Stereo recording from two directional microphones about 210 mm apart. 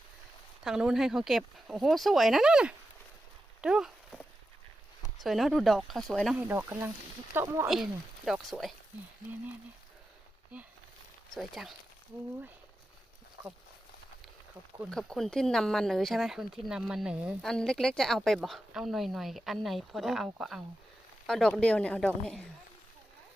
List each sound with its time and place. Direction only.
0.6 s speech: 5° right (ahead or behind)
3.6 s a sound: 5° right (ahead or behind)
5.2 s speech: centre (ahead or behind)
7.7 s speech: centre (ahead or behind)
11.3 s speech: centre (ahead or behind)
14.8 s speech: centre (ahead or behind)